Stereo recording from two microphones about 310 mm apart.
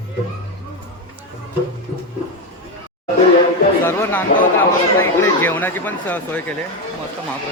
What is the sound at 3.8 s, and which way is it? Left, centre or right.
Speech, centre.